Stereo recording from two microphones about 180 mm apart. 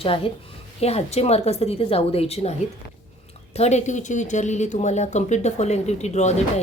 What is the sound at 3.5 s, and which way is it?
Speech, 40° left (ahead or behind).